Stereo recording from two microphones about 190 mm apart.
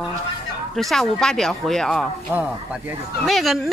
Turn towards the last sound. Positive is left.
turn(degrees=0)  # may be behind; listen again after turning